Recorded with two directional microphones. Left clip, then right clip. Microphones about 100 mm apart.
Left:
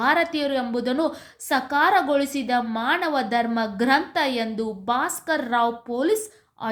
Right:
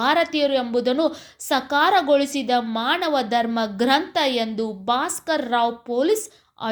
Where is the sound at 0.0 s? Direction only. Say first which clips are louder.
Right 2 dB; 25° right (ahead or behind).